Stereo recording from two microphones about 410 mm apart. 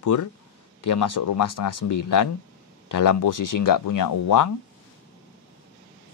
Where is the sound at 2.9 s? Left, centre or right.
Left.